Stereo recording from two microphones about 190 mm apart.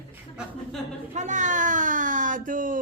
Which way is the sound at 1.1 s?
40° right (ahead or behind).